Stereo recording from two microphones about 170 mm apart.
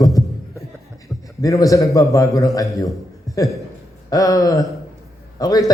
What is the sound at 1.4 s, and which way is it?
A man's voice, 20° left (ahead or behind).